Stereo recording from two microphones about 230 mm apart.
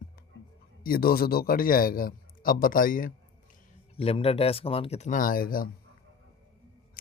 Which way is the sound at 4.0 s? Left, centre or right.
Left.